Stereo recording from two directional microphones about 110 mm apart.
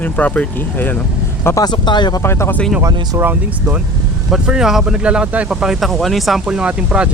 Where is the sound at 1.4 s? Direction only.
30° left (ahead or behind).